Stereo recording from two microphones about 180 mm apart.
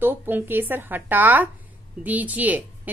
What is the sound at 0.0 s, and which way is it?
A woman's voice, 10° right (ahead or behind).